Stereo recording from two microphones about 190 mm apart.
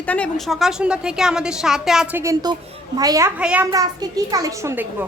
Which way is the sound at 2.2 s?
20° right (ahead or behind).